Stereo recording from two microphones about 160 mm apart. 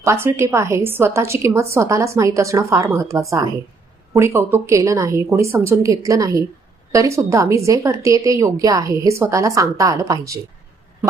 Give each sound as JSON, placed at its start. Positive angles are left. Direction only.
{"t": 0.0, "sound": "a woman's voice", "side_deg": -15}